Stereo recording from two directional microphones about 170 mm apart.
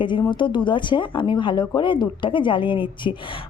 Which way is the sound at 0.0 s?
30° left (ahead or behind).